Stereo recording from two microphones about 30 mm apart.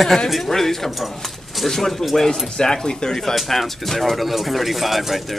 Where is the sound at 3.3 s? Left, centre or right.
Centre.